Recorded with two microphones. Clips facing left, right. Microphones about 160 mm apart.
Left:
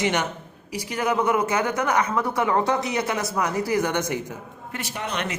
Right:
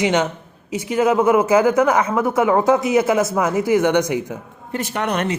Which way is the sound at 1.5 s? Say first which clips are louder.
Right 10 dB; 90° right.